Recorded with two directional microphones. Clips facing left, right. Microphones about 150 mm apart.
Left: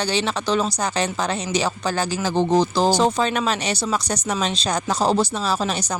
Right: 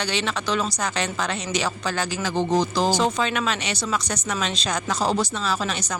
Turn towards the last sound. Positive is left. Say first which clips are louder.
# left 3 dB
turn(degrees=35)  # may be behind; listen again after turning